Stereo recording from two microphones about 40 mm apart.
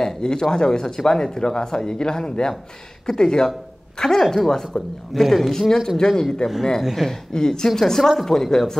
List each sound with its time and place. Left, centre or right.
0.0 s speech: centre
5.7 s speech: centre
6.8 s speech: centre
7.1 s speech: centre
8.3 s speech: centre